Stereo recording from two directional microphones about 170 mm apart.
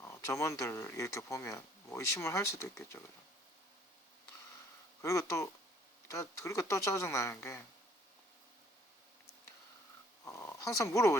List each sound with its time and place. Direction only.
0.0 s speech: 20° left (ahead or behind)
5.0 s speech: 20° left (ahead or behind)
10.2 s speech: 15° left (ahead or behind)